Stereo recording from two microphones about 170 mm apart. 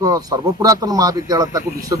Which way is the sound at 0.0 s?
20° right (ahead or behind).